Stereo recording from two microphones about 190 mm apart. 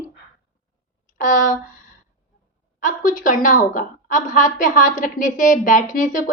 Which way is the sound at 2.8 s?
45° left (ahead or behind).